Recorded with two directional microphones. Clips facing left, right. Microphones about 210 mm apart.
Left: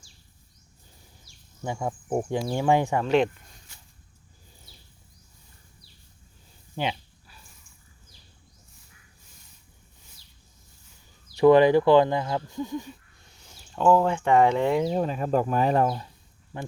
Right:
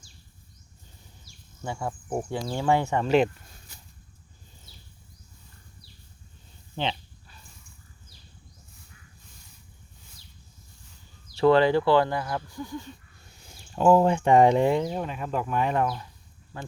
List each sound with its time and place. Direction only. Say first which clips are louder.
1.6 s speech: left 2 dB; 15° left (ahead or behind)
3.0 s speech: even; centre (ahead or behind)
6.7 s a sound: left 1 dB; 10° left (ahead or behind)
11.3 s speech: left 3 dB; 15° left (ahead or behind)
13.2 s speech: right 2 dB; 10° right (ahead or behind)
14.8 s speech: left 6 dB; 35° left (ahead or behind)